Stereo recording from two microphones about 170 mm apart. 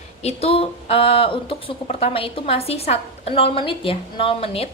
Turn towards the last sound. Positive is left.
turn(degrees=35)  # may be behind; listen again after turning